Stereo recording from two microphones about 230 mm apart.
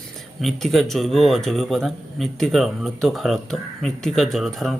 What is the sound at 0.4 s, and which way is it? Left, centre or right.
A man's voice, centre.